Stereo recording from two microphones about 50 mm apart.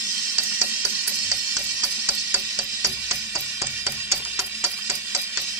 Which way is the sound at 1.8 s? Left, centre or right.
Right.